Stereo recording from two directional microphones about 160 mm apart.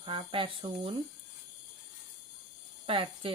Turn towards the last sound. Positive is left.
turn(degrees=-35)  # may be behind; listen again after turning